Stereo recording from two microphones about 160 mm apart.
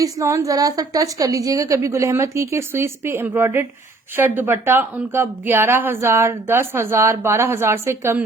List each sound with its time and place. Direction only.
0.0 s speech: 20° right (ahead or behind)